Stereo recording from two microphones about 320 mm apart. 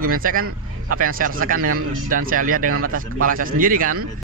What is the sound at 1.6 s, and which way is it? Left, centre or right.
Speech, right.